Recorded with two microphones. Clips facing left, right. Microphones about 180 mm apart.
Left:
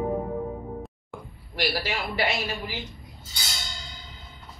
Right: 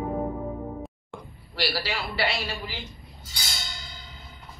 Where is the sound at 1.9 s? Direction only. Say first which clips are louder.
Left 1 dB; 20° left (ahead or behind).